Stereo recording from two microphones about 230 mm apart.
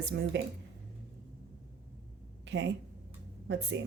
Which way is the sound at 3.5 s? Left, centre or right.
Right.